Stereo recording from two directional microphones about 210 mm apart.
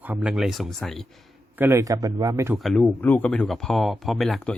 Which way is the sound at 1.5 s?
10° right (ahead or behind).